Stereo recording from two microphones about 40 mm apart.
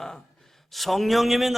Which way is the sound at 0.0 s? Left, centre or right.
Centre.